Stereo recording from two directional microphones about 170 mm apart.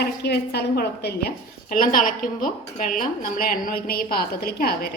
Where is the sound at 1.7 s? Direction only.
55° left (ahead or behind).